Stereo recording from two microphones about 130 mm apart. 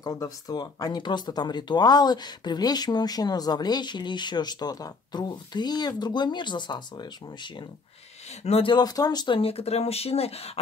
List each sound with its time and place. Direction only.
0.0 s speech: 25° left (ahead or behind)
8.5 s speech: 50° left (ahead or behind)
8.7 s speech: 30° left (ahead or behind)
9.4 s speech: 50° left (ahead or behind)